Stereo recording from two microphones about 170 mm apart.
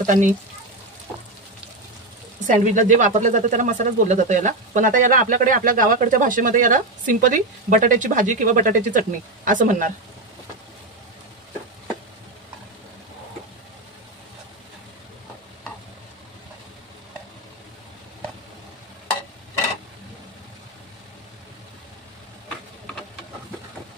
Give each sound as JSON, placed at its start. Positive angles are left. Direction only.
{"t": 0.0, "sound": "speech", "side_deg": -45}
{"t": 2.4, "sound": "speech", "side_deg": -50}